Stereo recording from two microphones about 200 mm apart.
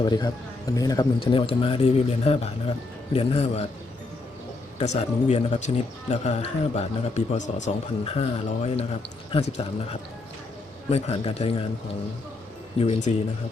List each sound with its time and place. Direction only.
0.0 s speech: 20° left (ahead or behind)
4.8 s speech: 30° left (ahead or behind)
10.8 s speech: 30° left (ahead or behind)
12.8 s speech: 30° left (ahead or behind)